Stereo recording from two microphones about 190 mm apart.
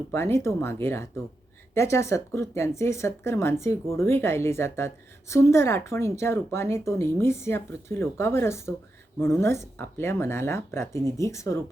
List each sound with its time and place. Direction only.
0.1 s speech: 15° left (ahead or behind)